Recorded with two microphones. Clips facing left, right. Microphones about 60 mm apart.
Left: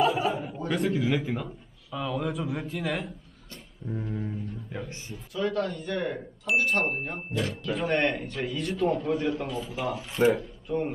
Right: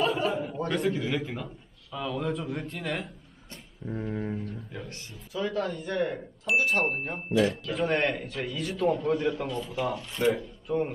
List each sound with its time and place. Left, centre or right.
0.0 s chuckle: centre
0.7 s a man's voice: centre
3.8 s music: centre
4.7 s speech: centre
5.1 s a man's voice: centre